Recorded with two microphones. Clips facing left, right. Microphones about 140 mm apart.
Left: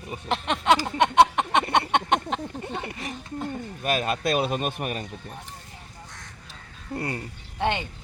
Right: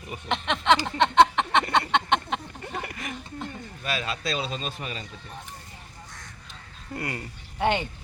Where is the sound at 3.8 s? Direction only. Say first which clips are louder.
Left 5 dB; 50° left (ahead or behind).